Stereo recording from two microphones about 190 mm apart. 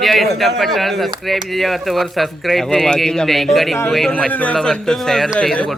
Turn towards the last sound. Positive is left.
turn(degrees=5)  # may be behind; listen again after turning